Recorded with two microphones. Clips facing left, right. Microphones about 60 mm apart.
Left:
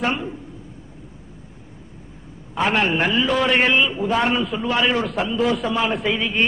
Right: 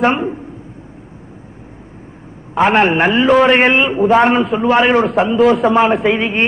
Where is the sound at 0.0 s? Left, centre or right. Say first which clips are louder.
Right 9 dB; right.